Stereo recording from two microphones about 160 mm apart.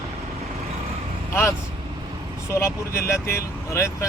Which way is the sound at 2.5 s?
15° left (ahead or behind).